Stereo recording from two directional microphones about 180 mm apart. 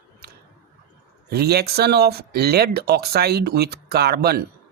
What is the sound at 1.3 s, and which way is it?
Speech, 60° right (ahead or behind).